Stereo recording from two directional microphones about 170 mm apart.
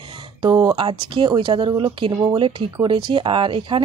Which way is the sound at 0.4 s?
25° right (ahead or behind).